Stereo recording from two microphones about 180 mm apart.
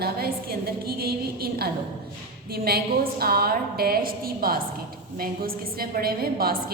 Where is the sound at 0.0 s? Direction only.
60° right (ahead or behind).